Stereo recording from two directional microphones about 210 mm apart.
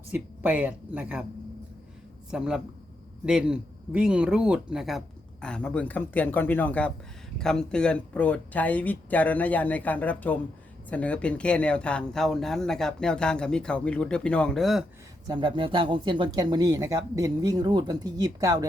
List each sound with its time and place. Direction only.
0.1 s speech: 5° right (ahead or behind)
2.3 s speech: 5° right (ahead or behind)
15.3 s speech: 25° right (ahead or behind)